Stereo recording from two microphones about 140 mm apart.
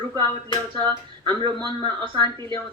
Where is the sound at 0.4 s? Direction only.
35° right (ahead or behind).